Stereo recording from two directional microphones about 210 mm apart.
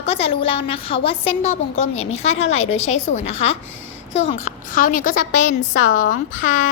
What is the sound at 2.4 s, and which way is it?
Speech, 70° left (ahead or behind).